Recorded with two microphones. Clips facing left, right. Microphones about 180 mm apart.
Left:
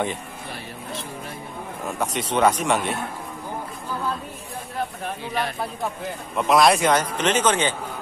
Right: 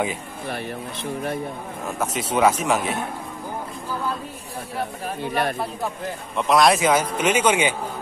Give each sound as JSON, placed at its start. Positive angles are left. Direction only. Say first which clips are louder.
{"t": 1.9, "sound": "speech", "louder": "even", "side_deg": -5}
{"t": 5.2, "sound": "speech", "louder": "right 4 dB", "side_deg": -50}
{"t": 5.6, "sound": "speech", "louder": "right 1 dB", "side_deg": 0}